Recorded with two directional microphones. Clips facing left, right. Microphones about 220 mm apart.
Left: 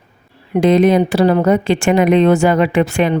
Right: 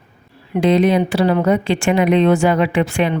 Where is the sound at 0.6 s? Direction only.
45° left (ahead or behind).